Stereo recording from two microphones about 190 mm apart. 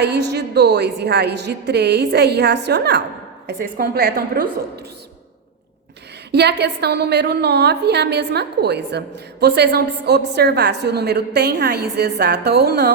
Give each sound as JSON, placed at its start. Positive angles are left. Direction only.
{"t": 0.0, "sound": "a woman's voice", "side_deg": -60}
{"t": 6.3, "sound": "a woman's voice", "side_deg": -60}